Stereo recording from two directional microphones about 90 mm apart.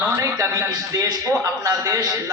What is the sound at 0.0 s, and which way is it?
A man's voice, 40° right (ahead or behind).